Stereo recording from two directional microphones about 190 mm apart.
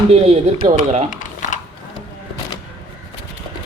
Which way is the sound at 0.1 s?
35° right (ahead or behind).